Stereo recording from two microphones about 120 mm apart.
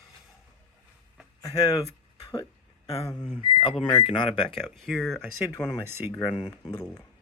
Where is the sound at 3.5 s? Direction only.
45° left (ahead or behind).